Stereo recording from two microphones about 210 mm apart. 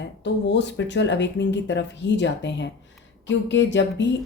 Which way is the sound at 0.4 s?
55° left (ahead or behind).